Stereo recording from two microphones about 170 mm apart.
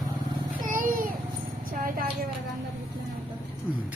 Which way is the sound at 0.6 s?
55° right (ahead or behind).